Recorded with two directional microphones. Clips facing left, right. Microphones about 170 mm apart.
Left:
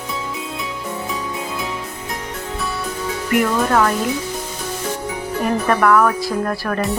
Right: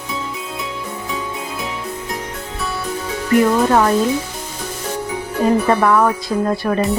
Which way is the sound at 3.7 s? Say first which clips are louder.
Right 2 dB; 25° right (ahead or behind).